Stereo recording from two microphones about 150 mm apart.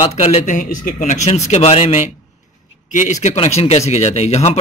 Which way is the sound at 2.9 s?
55° left (ahead or behind).